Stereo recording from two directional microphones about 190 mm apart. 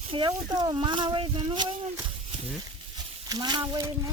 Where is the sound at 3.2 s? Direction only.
20° right (ahead or behind).